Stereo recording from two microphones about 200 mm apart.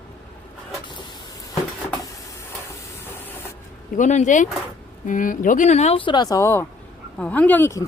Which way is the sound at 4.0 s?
35° left (ahead or behind).